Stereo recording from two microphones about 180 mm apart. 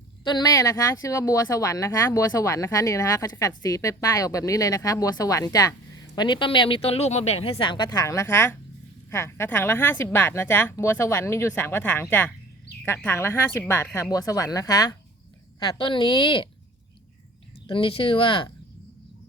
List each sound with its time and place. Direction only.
0.3 s a woman's voice: 20° left (ahead or behind)
17.7 s speech: 30° left (ahead or behind)